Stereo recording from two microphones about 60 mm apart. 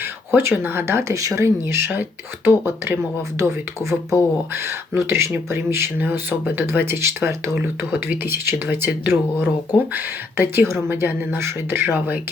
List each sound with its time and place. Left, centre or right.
0.0 s speech: right
1.1 s speech: right
1.5 s speech: right
8.0 s speech: right